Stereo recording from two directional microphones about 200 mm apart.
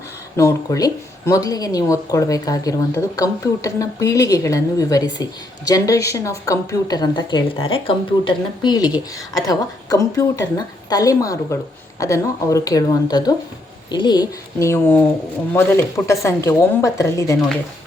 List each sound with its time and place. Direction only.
0.3 s speech: 15° left (ahead or behind)